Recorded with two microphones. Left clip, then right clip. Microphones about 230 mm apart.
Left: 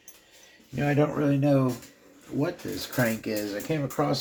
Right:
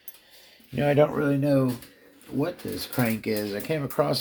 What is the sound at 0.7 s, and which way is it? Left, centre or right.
Speech, right.